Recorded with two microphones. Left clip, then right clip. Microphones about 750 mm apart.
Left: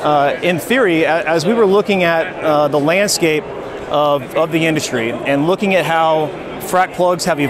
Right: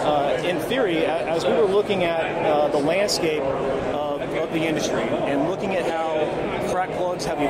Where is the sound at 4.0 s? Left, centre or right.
Left.